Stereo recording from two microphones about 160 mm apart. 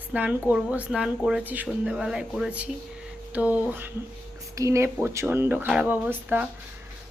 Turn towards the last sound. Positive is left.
turn(degrees=-10)  # may be behind; listen again after turning